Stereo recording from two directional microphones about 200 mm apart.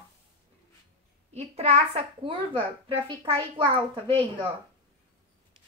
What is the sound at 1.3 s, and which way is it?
Speech, 35° right (ahead or behind).